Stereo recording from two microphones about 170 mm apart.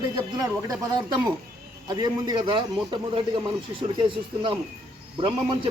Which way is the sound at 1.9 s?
25° right (ahead or behind).